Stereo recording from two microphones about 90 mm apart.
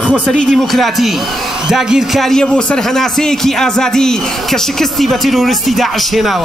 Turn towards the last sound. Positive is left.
turn(degrees=0)  # may be behind; listen again after turning